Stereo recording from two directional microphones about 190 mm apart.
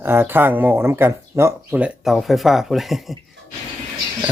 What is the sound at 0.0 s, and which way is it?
Speech, 10° right (ahead or behind).